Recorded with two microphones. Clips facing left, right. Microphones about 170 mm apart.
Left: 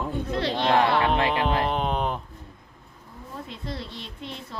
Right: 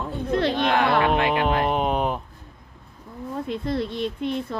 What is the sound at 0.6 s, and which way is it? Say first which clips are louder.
Speech: left 3 dB; 30° left (ahead or behind).